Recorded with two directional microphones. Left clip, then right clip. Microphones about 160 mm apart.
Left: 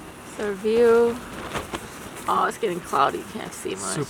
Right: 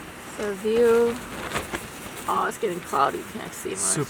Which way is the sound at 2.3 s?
20° left (ahead or behind).